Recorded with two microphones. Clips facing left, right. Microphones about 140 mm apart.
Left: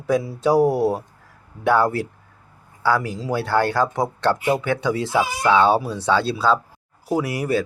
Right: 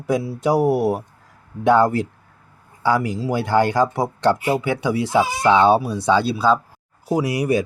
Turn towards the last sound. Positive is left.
turn(degrees=-15)  # may be behind; listen again after turning